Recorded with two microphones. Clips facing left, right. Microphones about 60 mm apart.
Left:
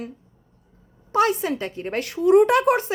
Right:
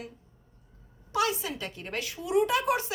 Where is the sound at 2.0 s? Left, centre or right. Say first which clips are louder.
Left 11 dB; left.